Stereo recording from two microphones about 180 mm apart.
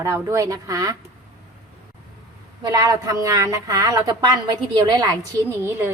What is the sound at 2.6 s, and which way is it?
A woman's voice, 20° right (ahead or behind).